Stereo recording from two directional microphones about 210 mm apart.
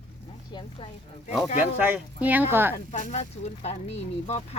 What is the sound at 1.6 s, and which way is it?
Speech, 10° right (ahead or behind).